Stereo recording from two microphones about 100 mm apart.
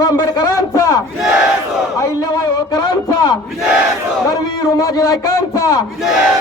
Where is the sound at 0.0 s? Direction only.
35° left (ahead or behind).